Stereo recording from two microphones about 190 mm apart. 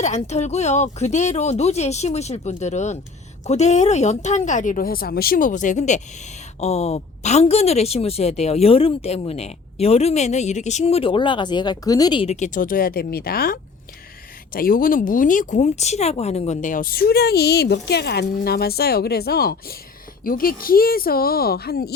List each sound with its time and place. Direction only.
0.0 s speech: 35° left (ahead or behind); by 21.9 s 55° left (ahead or behind)